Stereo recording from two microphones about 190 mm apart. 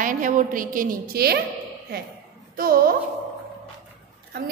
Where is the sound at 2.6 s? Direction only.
50° right (ahead or behind).